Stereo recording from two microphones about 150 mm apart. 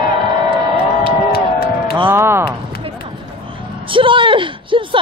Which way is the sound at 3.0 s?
35° right (ahead or behind).